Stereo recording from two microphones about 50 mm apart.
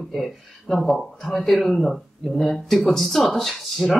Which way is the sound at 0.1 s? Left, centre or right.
Centre.